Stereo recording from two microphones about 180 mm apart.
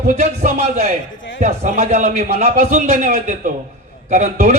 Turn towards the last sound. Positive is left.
turn(degrees=-40)  # may be behind; listen again after turning